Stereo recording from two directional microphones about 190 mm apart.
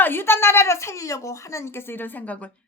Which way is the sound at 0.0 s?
10° left (ahead or behind).